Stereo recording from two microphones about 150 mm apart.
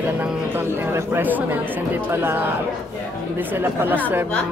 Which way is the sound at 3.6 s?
15° right (ahead or behind).